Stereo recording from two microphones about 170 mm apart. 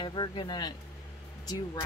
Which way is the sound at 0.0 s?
30° left (ahead or behind).